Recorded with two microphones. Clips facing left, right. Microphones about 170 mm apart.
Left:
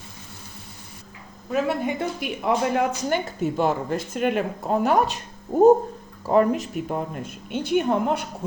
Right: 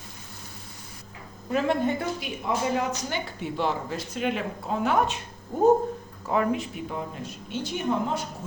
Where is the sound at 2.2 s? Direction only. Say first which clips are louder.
Left 5 dB; 55° left (ahead or behind); by 5.2 s 40° left (ahead or behind).